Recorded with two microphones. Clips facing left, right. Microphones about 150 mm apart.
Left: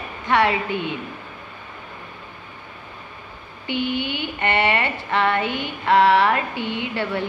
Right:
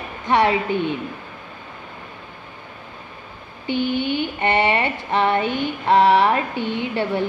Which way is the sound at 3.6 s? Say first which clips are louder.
Right 3 dB; 15° left (ahead or behind).